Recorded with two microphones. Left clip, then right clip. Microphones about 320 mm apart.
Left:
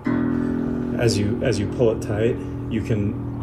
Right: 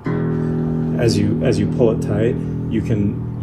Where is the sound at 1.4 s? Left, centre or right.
Centre.